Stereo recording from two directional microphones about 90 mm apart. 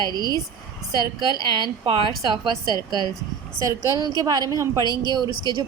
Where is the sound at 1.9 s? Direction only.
55° right (ahead or behind).